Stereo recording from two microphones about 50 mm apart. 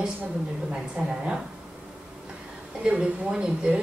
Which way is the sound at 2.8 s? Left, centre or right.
Right.